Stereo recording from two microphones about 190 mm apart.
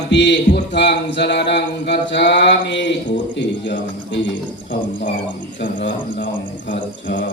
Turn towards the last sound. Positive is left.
turn(degrees=45)  # may be behind; listen again after turning